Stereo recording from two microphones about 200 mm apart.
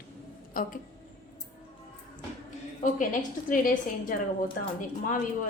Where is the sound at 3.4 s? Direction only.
40° left (ahead or behind).